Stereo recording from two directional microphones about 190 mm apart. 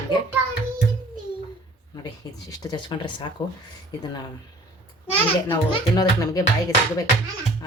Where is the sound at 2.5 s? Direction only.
20° left (ahead or behind).